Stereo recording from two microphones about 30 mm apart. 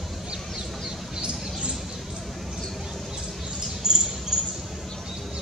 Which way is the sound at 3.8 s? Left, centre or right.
Centre.